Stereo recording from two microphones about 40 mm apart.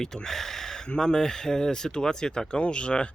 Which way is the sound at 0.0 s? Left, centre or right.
Centre.